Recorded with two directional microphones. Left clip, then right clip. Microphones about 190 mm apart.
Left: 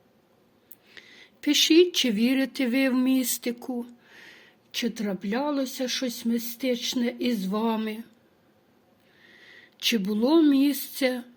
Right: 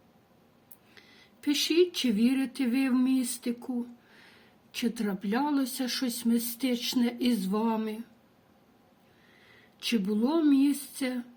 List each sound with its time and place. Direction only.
0.9 s speech: 25° left (ahead or behind)
9.5 s speech: 25° left (ahead or behind)